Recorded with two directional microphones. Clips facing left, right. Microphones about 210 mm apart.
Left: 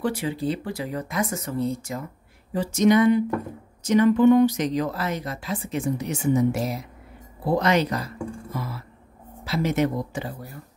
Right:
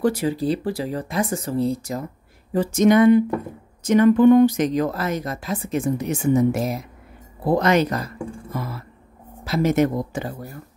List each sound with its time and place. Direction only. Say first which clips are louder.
0.0 s speech: right 5 dB; 40° right (ahead or behind)
2.5 s speech: right 3 dB; 50° right (ahead or behind)
8.5 s music: right 4 dB; 50° right (ahead or behind)
9.4 s speech: right 4 dB; 45° right (ahead or behind)